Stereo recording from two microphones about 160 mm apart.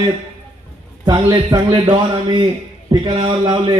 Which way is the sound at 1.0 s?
30° right (ahead or behind).